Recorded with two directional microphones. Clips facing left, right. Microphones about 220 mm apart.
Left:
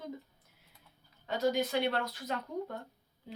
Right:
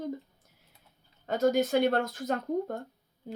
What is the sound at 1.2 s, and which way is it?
Speech, 45° right (ahead or behind).